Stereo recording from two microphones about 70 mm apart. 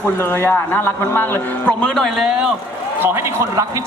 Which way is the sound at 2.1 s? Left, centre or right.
Centre.